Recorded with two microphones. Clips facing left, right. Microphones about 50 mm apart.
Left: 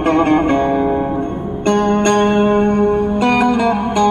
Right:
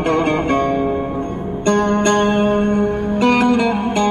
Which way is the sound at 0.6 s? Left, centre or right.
Centre.